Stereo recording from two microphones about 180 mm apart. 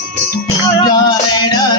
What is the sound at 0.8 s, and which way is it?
Music, 20° left (ahead or behind).